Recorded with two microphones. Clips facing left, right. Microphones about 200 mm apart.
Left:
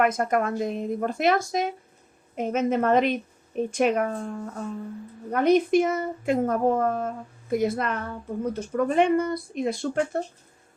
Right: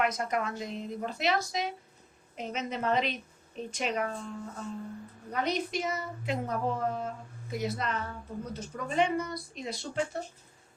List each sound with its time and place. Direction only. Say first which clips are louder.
0.0 s a woman's voice: left 7 dB; 50° left (ahead or behind)